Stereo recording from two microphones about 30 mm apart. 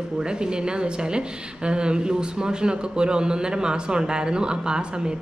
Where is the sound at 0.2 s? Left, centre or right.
Right.